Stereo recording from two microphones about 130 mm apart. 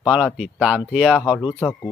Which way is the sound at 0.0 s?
5° right (ahead or behind).